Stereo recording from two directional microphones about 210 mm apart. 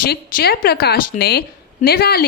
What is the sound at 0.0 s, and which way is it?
A woman's voice, 45° left (ahead or behind).